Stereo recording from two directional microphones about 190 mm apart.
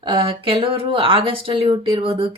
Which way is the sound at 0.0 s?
25° right (ahead or behind).